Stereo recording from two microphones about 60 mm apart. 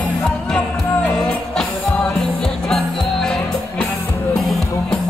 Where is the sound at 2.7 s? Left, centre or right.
Centre.